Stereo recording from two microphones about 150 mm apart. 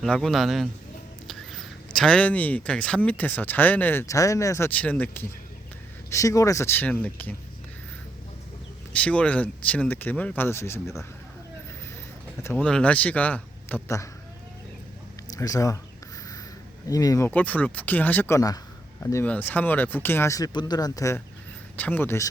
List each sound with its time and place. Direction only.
0.0 s a man's voice: 5° left (ahead or behind)
6.1 s speech: 20° left (ahead or behind)
8.9 s speech: 10° left (ahead or behind)
12.4 s speech: 20° left (ahead or behind)
12.6 s speech: 10° left (ahead or behind)
15.3 s speech: 20° left (ahead or behind)
16.9 s speech: 25° left (ahead or behind)
17.2 s speech: 10° left (ahead or behind)
19.1 s speech: 10° left (ahead or behind)
21.8 s speech: 10° left (ahead or behind)